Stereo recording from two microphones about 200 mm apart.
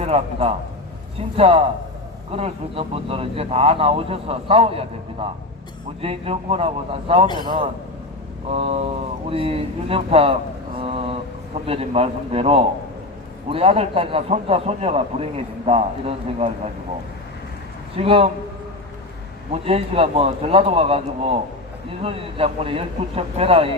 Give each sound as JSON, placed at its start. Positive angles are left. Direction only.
{"t": 0.0, "sound": "a man's voice", "side_deg": -30}
{"t": 1.4, "sound": "a sound", "side_deg": -30}
{"t": 2.3, "sound": "a man's voice", "side_deg": -30}
{"t": 8.4, "sound": "a sound", "side_deg": -30}
{"t": 9.3, "sound": "a man's voice", "side_deg": -30}
{"t": 17.9, "sound": "a man's voice", "side_deg": -30}
{"t": 19.5, "sound": "a man's voice", "side_deg": -30}